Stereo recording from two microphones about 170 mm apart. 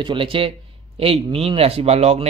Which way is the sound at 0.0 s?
30° right (ahead or behind).